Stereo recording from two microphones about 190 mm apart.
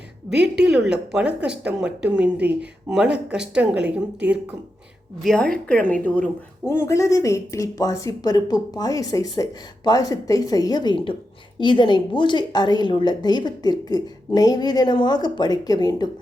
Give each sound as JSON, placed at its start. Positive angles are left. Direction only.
{"t": 0.3, "sound": "a woman's voice", "side_deg": -10}